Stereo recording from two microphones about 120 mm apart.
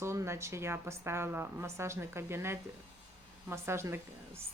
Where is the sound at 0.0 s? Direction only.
20° right (ahead or behind).